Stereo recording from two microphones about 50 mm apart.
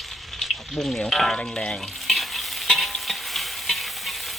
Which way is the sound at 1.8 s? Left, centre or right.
Centre.